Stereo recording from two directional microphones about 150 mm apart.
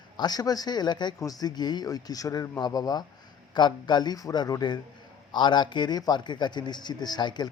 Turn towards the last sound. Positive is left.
turn(degrees=30)  # may be behind; listen again after turning